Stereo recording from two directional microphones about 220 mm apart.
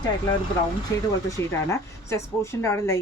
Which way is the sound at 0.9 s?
15° left (ahead or behind).